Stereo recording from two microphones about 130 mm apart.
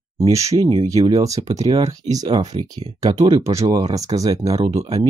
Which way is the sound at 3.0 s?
45° right (ahead or behind).